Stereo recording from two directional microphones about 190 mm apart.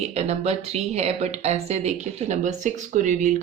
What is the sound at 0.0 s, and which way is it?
Speech, 35° right (ahead or behind).